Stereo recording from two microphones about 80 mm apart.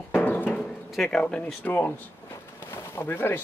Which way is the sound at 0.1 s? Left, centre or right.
Left.